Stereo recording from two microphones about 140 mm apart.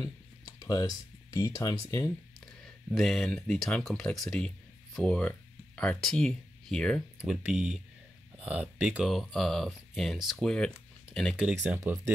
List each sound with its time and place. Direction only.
0.0 s speech: 25° left (ahead or behind)
2.4 s speech: centre (ahead or behind)
7.2 s speech: 5° right (ahead or behind)
11.7 s speech: 20° right (ahead or behind)